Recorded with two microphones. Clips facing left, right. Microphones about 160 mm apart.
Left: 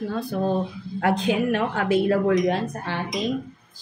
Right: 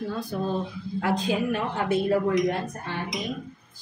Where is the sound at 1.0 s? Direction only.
65° left (ahead or behind); by 3.0 s 90° left.